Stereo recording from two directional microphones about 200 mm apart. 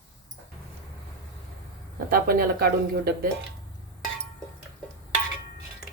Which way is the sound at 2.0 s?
45° right (ahead or behind).